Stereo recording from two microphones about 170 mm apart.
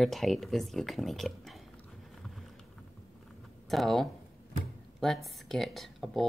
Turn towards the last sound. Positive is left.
turn(degrees=0)  # may be behind; listen again after turning